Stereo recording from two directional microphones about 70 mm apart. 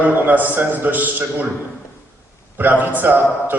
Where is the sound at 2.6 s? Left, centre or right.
Right.